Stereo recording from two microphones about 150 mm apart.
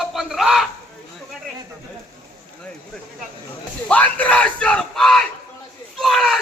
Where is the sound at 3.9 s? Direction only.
10° left (ahead or behind).